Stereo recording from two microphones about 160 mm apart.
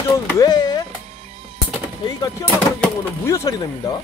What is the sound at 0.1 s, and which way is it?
Speech, 25° left (ahead or behind).